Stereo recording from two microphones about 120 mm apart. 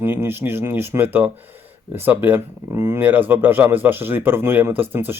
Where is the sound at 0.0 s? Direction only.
20° right (ahead or behind).